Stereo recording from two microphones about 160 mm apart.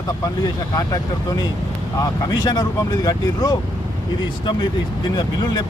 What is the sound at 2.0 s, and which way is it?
Speech, 25° left (ahead or behind).